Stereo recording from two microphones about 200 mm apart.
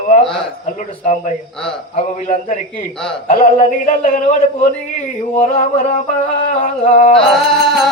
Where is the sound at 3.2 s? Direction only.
45° left (ahead or behind).